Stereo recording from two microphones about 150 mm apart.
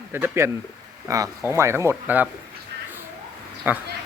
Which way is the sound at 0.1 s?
15° right (ahead or behind).